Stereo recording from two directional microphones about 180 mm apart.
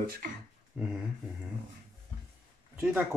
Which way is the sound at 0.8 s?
10° right (ahead or behind).